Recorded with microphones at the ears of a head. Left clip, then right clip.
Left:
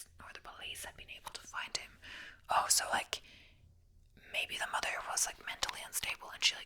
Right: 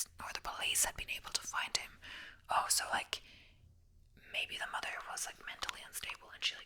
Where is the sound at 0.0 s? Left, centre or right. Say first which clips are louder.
Right 8 dB; right.